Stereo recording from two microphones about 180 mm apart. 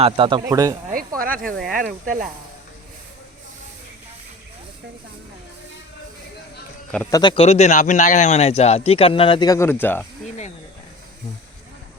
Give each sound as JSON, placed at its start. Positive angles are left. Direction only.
{"t": 0.0, "sound": "speech", "side_deg": -30}
{"t": 1.2, "sound": "speech", "side_deg": -50}
{"t": 7.1, "sound": "speech", "side_deg": 25}
{"t": 7.4, "sound": "speech", "side_deg": 40}